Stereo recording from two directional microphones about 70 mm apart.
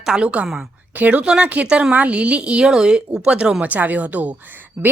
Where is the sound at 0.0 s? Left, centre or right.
Centre.